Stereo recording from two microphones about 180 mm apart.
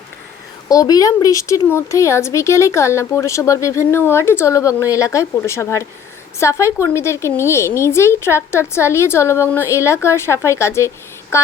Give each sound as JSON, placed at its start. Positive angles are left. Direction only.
{"t": 0.7, "sound": "a woman's voice", "side_deg": 20}